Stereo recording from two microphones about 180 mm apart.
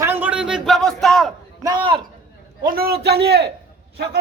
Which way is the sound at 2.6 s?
55° right (ahead or behind).